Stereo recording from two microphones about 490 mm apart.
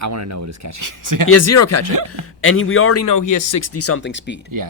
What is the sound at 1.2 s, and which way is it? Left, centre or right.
Speech, left.